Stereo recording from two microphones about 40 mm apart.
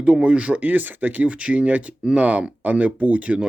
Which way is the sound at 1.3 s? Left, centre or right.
Right.